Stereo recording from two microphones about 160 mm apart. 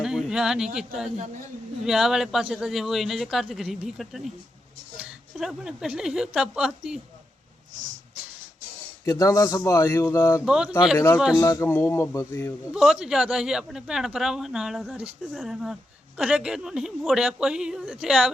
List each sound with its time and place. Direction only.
0.0 s a sound: 5° right (ahead or behind)
1.8 s a woman's voice: centre (ahead or behind)
9.0 s a man's voice: 20° left (ahead or behind)
10.4 s a woman's voice: 5° right (ahead or behind)
10.9 s a man's voice: 15° left (ahead or behind)
12.7 s a woman's voice: centre (ahead or behind)